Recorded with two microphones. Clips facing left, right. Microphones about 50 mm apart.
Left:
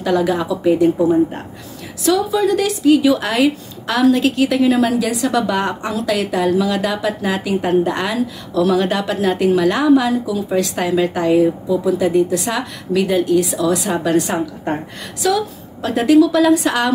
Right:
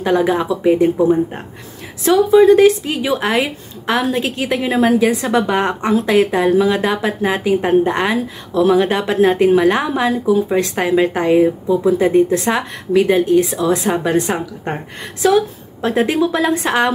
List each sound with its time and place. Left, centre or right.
0.0 s speech: right